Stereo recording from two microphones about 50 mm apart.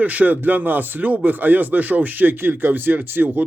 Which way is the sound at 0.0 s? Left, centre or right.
Right.